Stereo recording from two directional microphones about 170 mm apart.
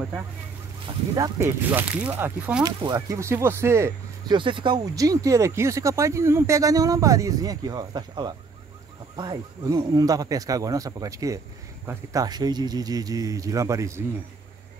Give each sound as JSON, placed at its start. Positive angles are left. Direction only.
{"t": 0.8, "sound": "speech", "side_deg": -25}
{"t": 2.6, "sound": "speech", "side_deg": -20}
{"t": 4.4, "sound": "speech", "side_deg": -30}